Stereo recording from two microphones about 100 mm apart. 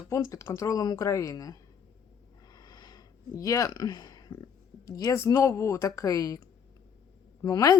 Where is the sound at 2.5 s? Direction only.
45° left (ahead or behind).